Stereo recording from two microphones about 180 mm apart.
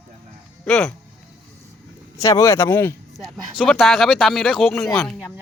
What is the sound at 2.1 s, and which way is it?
Speech, 20° left (ahead or behind).